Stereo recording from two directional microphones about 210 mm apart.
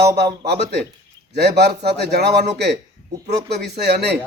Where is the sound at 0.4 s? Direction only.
50° right (ahead or behind).